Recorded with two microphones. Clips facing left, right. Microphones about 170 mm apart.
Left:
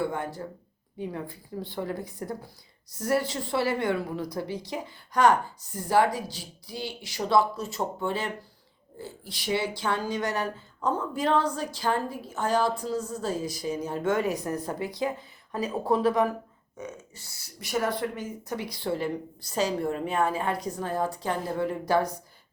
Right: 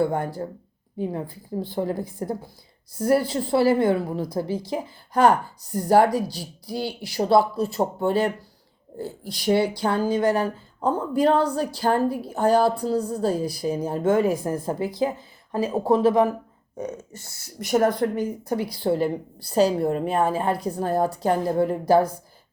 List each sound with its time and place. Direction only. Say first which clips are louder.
0.1 s speech: right 6 dB; 35° right (ahead or behind)
16.7 s speech: right 8 dB; 40° right (ahead or behind)